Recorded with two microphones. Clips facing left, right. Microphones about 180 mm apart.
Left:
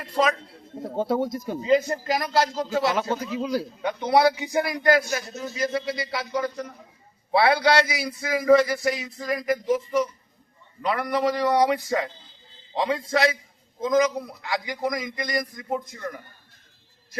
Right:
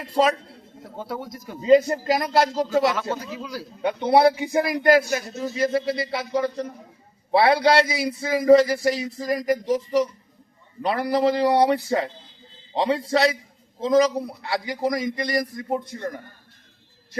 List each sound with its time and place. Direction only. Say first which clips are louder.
0.8 s a man's voice: left 8 dB; 25° left (ahead or behind)
1.6 s a man's voice: right 5 dB; 30° right (ahead or behind)
2.9 s a man's voice: left 2 dB; 20° left (ahead or behind)
3.8 s a man's voice: right 4 dB; 30° right (ahead or behind)